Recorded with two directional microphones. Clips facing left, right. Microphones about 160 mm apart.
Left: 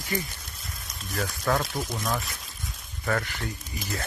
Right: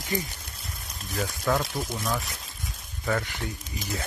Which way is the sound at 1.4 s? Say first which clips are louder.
Even; 5° right (ahead or behind).